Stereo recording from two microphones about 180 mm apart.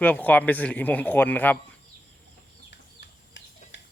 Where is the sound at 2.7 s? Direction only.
80° left.